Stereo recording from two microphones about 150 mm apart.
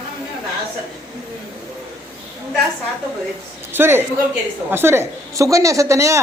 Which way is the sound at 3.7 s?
15° right (ahead or behind).